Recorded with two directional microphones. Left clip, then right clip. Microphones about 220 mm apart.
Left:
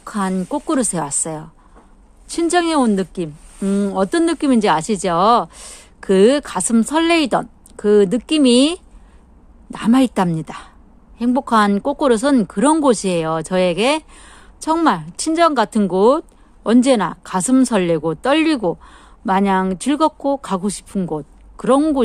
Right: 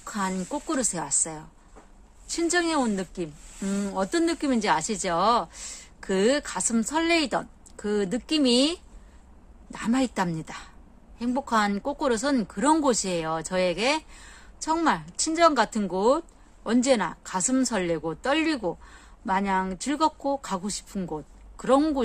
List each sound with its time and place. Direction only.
0.0 s a woman's voice: 35° left (ahead or behind)